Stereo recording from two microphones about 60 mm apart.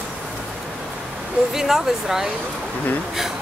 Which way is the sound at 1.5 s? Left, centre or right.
Centre.